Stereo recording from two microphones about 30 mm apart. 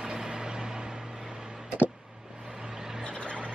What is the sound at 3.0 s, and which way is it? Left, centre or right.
Vehicle, left.